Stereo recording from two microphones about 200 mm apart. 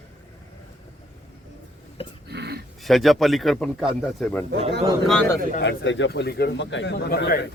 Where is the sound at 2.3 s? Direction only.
55° right (ahead or behind).